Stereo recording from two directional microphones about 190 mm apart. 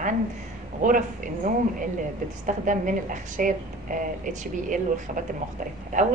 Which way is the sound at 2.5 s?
45° right (ahead or behind).